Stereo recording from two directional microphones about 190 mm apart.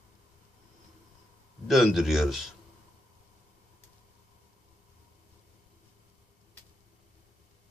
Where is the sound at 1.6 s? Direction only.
Centre (ahead or behind).